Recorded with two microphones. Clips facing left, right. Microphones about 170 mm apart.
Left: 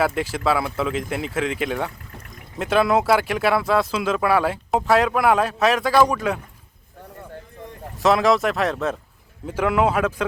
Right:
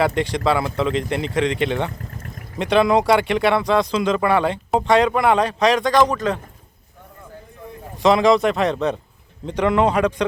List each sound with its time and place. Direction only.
0.0 s speech: 5° left (ahead or behind)
2.0 s a sound: 40° right (ahead or behind)
2.6 s speech: 5° left (ahead or behind)
8.0 s speech: centre (ahead or behind)